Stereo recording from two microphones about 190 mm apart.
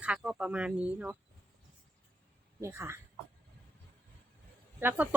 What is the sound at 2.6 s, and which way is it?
Speech, 15° right (ahead or behind).